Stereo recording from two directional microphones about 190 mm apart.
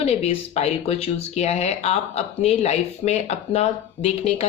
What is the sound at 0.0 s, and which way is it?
Speech, 35° left (ahead or behind).